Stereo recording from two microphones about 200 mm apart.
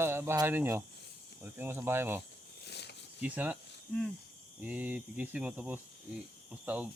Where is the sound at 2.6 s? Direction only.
55° left (ahead or behind).